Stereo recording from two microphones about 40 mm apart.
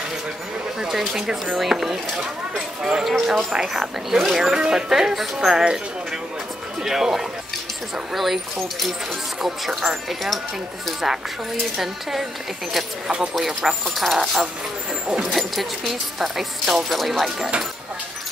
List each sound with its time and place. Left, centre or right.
0.7 s speech: centre
3.5 s speech: centre
4.5 s speech: centre
6.8 s speech: centre
11.8 s speech: centre
13.3 s speech: centre
15.3 s speech: centre